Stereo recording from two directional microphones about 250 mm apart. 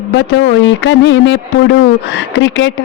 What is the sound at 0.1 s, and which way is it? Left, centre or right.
Speech, left.